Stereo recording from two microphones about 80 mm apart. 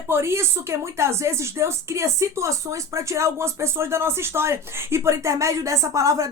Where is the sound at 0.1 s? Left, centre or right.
Right.